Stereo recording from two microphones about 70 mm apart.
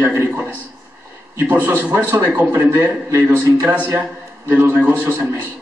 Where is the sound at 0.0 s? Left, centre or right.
Right.